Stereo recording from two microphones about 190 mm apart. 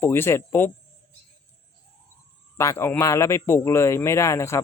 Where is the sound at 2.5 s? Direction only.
15° left (ahead or behind).